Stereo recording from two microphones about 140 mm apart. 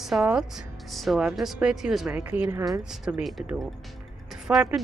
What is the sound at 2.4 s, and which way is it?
Speech, 25° right (ahead or behind).